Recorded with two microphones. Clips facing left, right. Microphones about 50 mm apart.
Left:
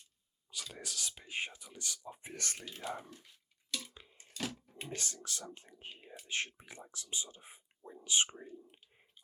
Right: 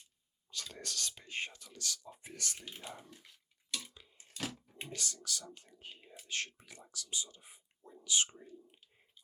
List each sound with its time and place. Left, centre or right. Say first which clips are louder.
0.5 s speech: right 1 dB; centre
2.3 s speech: left 1 dB; left
2.7 s speech: left 7 dB; left
4.0 s a sound: left 3 dB; left
4.4 s bathtub: left 1 dB; centre
4.9 s speech: even; left